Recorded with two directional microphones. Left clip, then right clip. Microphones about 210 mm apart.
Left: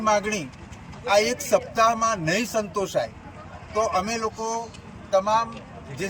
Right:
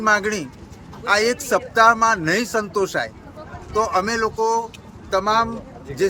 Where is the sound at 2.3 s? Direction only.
Centre (ahead or behind).